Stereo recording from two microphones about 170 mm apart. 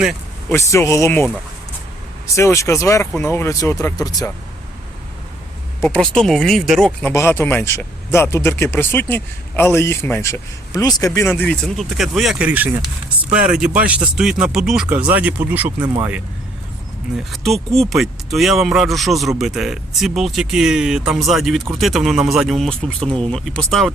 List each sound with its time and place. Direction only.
0.5 s speech: 20° left (ahead or behind)
5.8 s speech: 5° left (ahead or behind)
7.1 s speech: 15° left (ahead or behind); by 15.6 s 10° right (ahead or behind)
15.8 s speech: 25° right (ahead or behind)
17.3 s speech: centre (ahead or behind)
23.0 s speech: 35° right (ahead or behind)
23.3 s speech: 5° left (ahead or behind)